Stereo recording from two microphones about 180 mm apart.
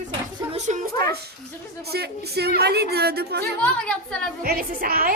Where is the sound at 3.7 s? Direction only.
5° left (ahead or behind).